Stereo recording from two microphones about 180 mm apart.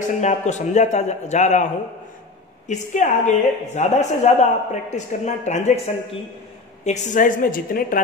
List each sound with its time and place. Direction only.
0.2 s a woman's voice: 40° left (ahead or behind)
2.7 s a woman's voice: 40° left (ahead or behind)